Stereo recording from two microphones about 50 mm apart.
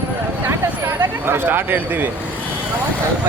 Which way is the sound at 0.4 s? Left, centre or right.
Right.